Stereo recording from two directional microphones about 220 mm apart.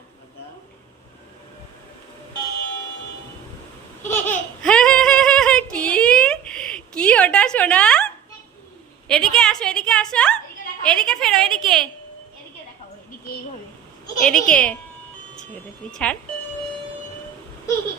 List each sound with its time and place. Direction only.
4.0 s a sound: 10° left (ahead or behind)
10.8 s a woman's voice: 5° left (ahead or behind)
14.2 s a woman's voice: 5° left (ahead or behind)
15.9 s a woman's voice: 5° left (ahead or behind)